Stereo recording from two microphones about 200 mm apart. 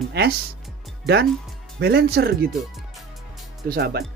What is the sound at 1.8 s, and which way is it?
Speech, 55° right (ahead or behind).